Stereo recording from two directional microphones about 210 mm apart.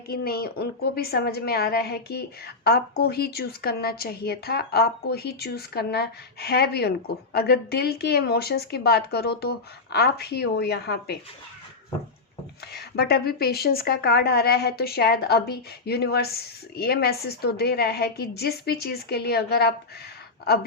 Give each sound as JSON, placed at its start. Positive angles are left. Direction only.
{"t": 0.1, "sound": "speech", "side_deg": 45}
{"t": 12.7, "sound": "speech", "side_deg": 50}